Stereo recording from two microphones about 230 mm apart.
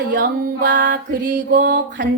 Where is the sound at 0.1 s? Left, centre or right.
Right.